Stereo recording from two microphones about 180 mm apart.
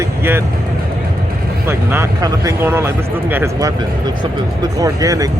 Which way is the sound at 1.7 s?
15° right (ahead or behind).